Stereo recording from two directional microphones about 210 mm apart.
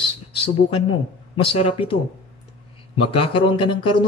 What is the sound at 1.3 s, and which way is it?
Speech, 25° left (ahead or behind).